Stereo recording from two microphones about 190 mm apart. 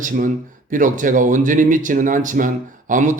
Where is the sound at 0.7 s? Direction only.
45° right (ahead or behind).